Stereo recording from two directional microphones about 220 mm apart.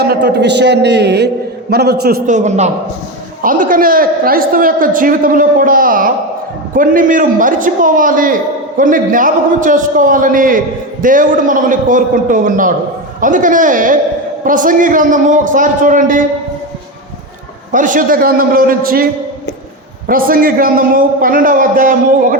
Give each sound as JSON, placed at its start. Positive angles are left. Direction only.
{"t": 0.0, "sound": "a man's voice", "side_deg": -45}
{"t": 17.7, "sound": "a man's voice", "side_deg": -35}
{"t": 20.1, "sound": "a man's voice", "side_deg": -40}